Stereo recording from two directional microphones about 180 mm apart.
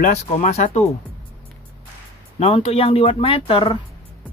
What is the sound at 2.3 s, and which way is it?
Speech, 35° left (ahead or behind).